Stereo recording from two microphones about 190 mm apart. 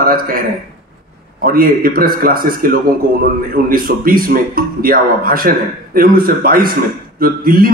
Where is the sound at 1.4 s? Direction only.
50° right (ahead or behind).